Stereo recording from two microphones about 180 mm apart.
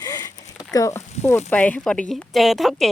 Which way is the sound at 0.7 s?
20° left (ahead or behind).